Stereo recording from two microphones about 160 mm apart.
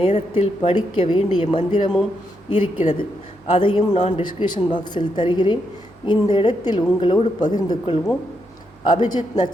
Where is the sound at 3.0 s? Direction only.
35° left (ahead or behind).